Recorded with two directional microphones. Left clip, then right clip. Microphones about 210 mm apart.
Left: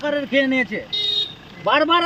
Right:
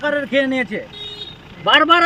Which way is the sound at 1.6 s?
10° right (ahead or behind).